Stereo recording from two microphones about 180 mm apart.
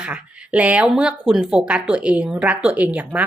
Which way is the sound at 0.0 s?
5° right (ahead or behind).